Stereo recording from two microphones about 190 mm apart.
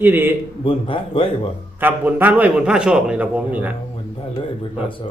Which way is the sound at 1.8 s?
10° right (ahead or behind).